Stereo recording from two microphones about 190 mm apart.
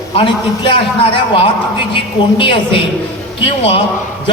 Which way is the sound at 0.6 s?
30° left (ahead or behind).